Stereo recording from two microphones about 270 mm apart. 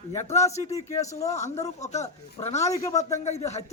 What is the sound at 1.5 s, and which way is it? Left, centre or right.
A man's voice, left.